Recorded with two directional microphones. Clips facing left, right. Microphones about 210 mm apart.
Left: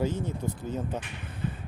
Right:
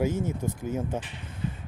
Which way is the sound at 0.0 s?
10° right (ahead or behind).